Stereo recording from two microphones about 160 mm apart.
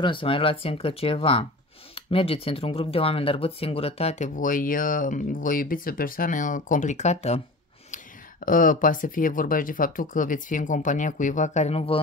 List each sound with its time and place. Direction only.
0.0 s speech: 30° left (ahead or behind)
7.9 s speech: 55° left (ahead or behind); by 12.0 s 40° left (ahead or behind)